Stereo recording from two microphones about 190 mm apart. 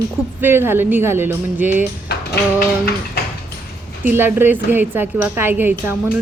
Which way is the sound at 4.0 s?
10° right (ahead or behind).